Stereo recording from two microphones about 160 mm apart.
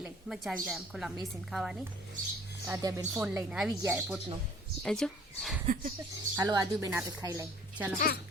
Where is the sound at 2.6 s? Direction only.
15° right (ahead or behind).